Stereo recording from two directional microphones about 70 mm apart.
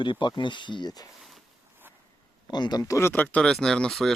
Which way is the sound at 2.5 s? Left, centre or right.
Left.